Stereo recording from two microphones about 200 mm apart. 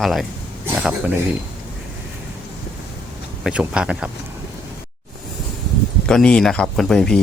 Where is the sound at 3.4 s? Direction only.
5° right (ahead or behind).